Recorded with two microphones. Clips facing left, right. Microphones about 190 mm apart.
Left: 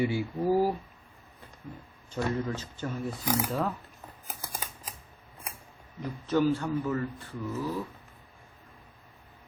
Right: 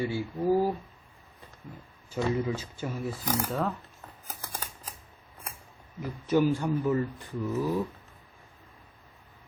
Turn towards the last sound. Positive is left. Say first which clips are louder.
# right 4 dB
turn(degrees=-15)  # may be behind; listen again after turning